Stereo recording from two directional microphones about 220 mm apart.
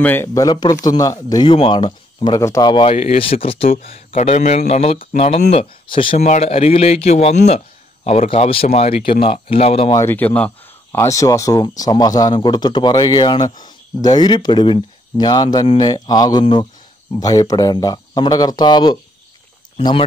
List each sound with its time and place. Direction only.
0.0 s speech: 10° left (ahead or behind); by 9.9 s 25° left (ahead or behind)
9.9 s speech: 10° left (ahead or behind)